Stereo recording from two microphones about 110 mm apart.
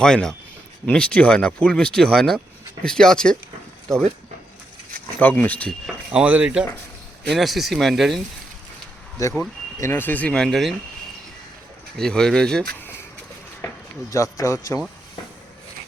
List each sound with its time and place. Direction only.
0.0 s speech: 5° left (ahead or behind)
5.2 s speech: 15° left (ahead or behind)
6.1 s speech: 15° right (ahead or behind)
9.2 s speech: 30° left (ahead or behind)
9.8 s speech: 20° left (ahead or behind); by 10.8 s centre (ahead or behind)
11.9 s speech: 5° left (ahead or behind)
14.1 s a man's voice: 30° left (ahead or behind)